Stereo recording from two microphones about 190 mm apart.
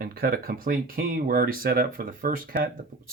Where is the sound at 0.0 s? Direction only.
50° right (ahead or behind).